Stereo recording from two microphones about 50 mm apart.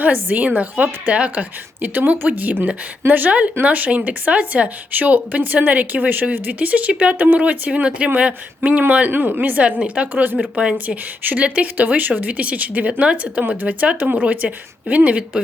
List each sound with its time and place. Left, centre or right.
0.0 s a woman's voice: right
1.8 s a woman's voice: right
13.4 s a woman's voice: right